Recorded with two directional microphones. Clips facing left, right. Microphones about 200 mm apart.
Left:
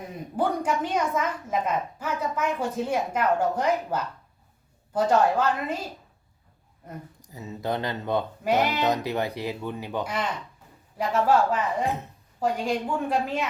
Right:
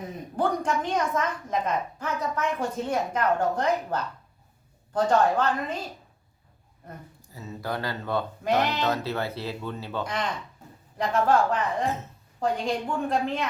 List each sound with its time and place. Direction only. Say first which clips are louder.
0.3 s a woman's voice: left 1 dB; 10° left (ahead or behind)
7.2 s speech: left 2 dB; 20° left (ahead or behind)
8.4 s a woman's voice: left 1 dB; 10° left (ahead or behind)